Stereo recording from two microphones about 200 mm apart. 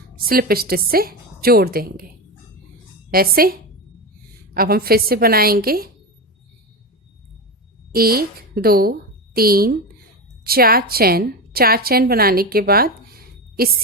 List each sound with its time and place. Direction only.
0.3 s a woman's voice: 50° right (ahead or behind)
3.1 s a woman's voice: 45° right (ahead or behind)
7.9 s a woman's voice: 50° right (ahead or behind)